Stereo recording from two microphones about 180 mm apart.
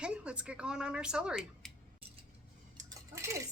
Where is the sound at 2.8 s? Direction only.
15° right (ahead or behind).